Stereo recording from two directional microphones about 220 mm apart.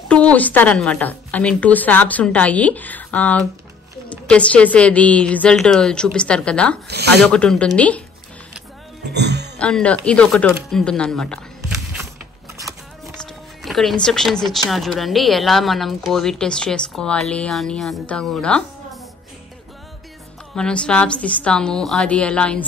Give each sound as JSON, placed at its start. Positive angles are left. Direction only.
{"t": 0.1, "sound": "a woman's voice", "side_deg": 5}
{"t": 6.9, "sound": "speech", "side_deg": -50}
{"t": 7.2, "sound": "a woman's voice", "side_deg": 5}
{"t": 9.0, "sound": "speech", "side_deg": -50}
{"t": 9.6, "sound": "speech", "side_deg": 5}
{"t": 13.0, "sound": "music", "side_deg": 0}
{"t": 14.5, "sound": "a woman's voice", "side_deg": 0}
{"t": 20.5, "sound": "a woman's voice", "side_deg": 5}